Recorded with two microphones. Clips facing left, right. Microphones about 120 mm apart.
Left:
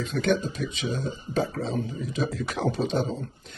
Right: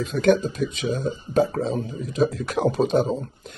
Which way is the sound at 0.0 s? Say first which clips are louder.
Right 6 dB; 50° right (ahead or behind).